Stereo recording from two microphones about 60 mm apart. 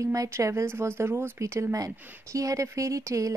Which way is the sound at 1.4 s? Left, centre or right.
Right.